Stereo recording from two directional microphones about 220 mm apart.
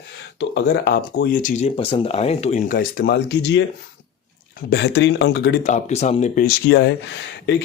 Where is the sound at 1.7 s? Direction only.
25° left (ahead or behind); by 3.6 s 50° left (ahead or behind).